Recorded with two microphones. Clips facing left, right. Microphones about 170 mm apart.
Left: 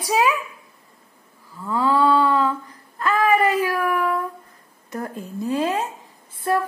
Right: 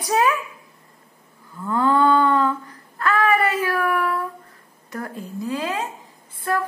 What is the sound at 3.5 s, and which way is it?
Speech, 10° left (ahead or behind).